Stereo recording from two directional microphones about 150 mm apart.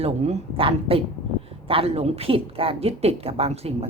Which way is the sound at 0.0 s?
45° right (ahead or behind).